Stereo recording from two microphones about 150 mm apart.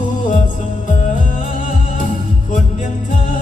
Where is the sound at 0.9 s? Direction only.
55° left (ahead or behind).